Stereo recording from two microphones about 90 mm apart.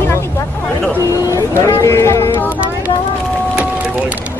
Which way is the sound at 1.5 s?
30° left (ahead or behind).